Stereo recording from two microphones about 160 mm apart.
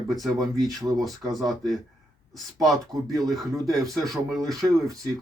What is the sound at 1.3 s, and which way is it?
Speech, centre (ahead or behind).